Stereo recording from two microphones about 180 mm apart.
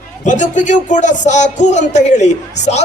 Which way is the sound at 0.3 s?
45° left (ahead or behind).